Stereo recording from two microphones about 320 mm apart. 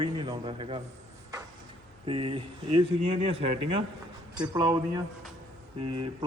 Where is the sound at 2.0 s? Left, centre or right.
Centre.